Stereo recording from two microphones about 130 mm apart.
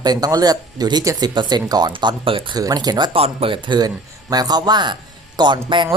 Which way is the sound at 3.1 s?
45° right (ahead or behind).